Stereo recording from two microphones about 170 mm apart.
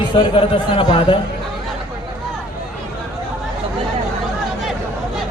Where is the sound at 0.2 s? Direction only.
30° left (ahead or behind).